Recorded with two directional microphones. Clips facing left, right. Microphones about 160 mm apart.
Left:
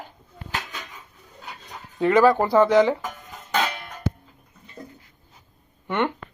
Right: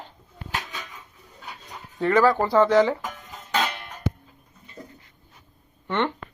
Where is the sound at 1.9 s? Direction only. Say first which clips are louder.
Left 2 dB; 15° left (ahead or behind).